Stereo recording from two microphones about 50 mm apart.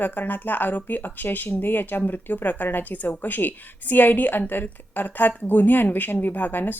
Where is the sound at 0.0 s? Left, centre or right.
Left.